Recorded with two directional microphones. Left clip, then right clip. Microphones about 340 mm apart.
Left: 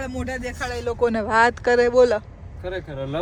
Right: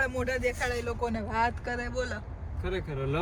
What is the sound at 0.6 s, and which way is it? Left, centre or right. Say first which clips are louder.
Speech: left 8 dB; centre.